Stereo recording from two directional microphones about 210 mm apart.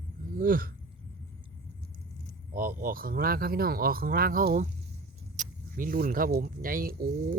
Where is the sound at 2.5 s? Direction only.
40° right (ahead or behind).